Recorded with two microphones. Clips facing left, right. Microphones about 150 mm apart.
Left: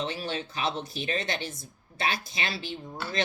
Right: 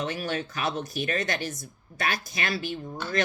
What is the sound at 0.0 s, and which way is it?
Speech, 25° left (ahead or behind).